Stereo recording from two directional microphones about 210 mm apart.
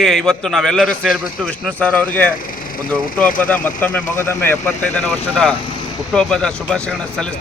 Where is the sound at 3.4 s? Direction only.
5° left (ahead or behind).